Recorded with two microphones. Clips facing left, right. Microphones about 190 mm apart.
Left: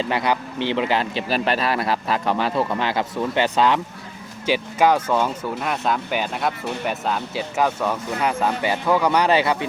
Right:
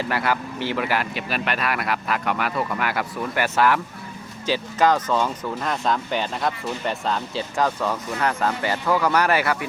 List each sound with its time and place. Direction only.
0.0 s speech: 20° left (ahead or behind)